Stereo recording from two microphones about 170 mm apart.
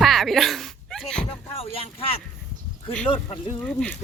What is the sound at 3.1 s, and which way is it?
Speech, 35° left (ahead or behind).